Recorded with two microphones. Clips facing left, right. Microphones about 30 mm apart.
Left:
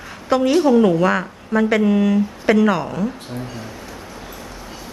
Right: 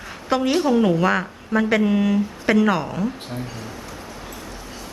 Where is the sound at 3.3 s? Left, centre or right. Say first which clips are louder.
Left 1 dB; centre.